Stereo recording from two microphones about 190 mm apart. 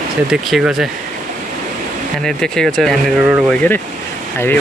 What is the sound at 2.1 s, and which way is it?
Speech, 5° left (ahead or behind).